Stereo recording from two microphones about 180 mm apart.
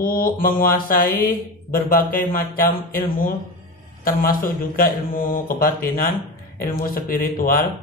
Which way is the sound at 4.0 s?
55° left (ahead or behind).